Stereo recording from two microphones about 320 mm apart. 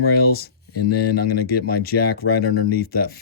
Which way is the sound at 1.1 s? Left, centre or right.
Left.